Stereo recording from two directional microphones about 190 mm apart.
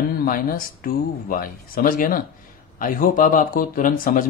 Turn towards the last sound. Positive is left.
turn(degrees=45)  # may be behind; listen again after turning